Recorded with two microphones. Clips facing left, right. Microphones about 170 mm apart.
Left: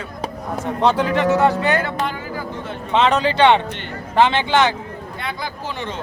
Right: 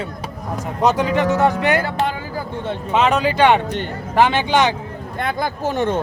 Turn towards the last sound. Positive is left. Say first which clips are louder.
# right 8 dB
turn(degrees=-50)  # may be behind; listen again after turning